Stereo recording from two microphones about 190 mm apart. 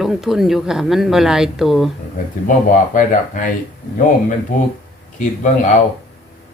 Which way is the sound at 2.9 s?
45° left (ahead or behind).